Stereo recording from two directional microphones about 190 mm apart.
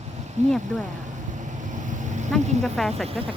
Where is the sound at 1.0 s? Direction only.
40° right (ahead or behind).